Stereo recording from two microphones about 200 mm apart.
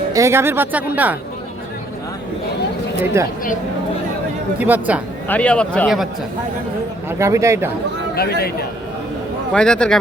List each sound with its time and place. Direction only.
0.1 s speech: 15° right (ahead or behind)
3.0 s speech: 10° right (ahead or behind)
4.6 s speech: 10° right (ahead or behind)
5.3 s a man's voice: 5° left (ahead or behind)
7.1 s speech: 15° right (ahead or behind)
8.1 s speech: 50° left (ahead or behind)
9.5 s a man's voice: 5° left (ahead or behind)